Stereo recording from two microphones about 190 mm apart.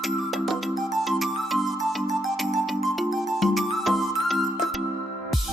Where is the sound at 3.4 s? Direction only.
Centre (ahead or behind).